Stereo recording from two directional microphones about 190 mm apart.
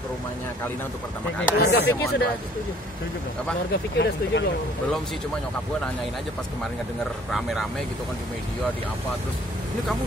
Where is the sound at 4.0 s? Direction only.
65° left (ahead or behind).